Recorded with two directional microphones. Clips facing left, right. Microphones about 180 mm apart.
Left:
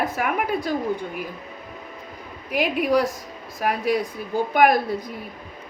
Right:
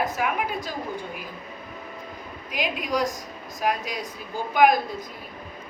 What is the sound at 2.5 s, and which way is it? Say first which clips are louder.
A woman's voice: left 7 dB; 60° left (ahead or behind).